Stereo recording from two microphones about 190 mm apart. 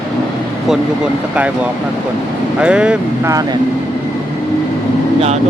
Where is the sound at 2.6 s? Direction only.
5° right (ahead or behind).